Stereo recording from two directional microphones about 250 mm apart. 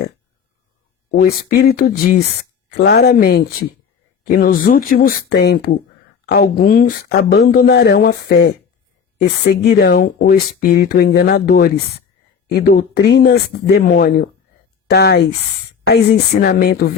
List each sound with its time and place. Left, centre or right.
1.1 s speech: left